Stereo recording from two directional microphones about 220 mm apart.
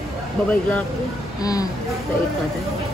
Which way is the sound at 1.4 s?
15° left (ahead or behind).